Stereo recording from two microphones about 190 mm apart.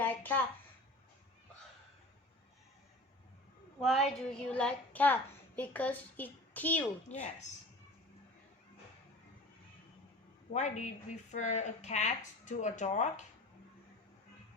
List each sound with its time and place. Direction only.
0.0 s a woman's voice: 10° left (ahead or behind)
3.8 s a child's voice: centre (ahead or behind)
7.1 s a woman's voice: 40° left (ahead or behind)
10.5 s a woman's voice: 40° left (ahead or behind)